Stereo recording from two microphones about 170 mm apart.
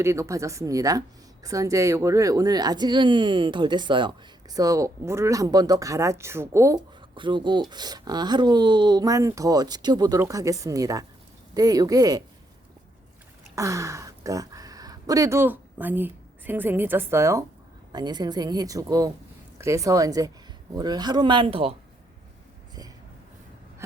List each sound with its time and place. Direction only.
0.0 s speech: 15° right (ahead or behind)
13.6 s speech: 20° right (ahead or behind); by 21.8 s 35° right (ahead or behind)